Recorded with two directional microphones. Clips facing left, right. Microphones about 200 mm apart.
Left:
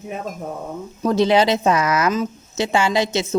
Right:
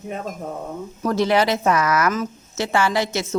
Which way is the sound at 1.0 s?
20° left (ahead or behind).